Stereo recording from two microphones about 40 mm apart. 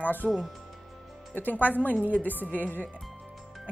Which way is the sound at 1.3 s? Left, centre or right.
Left.